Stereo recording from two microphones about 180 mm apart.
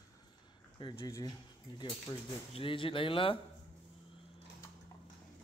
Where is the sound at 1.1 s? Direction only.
20° left (ahead or behind).